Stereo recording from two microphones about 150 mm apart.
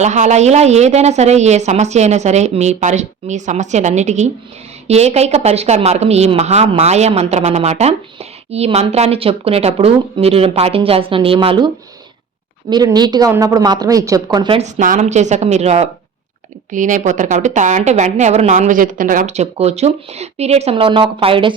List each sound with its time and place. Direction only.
0.0 s a woman's voice: 50° right (ahead or behind); by 11.7 s 30° right (ahead or behind)
12.7 s a woman's voice: 30° right (ahead or behind)
14.6 s a woman's voice: 60° right (ahead or behind)
16.7 s a woman's voice: 55° right (ahead or behind); by 21.5 s 35° right (ahead or behind)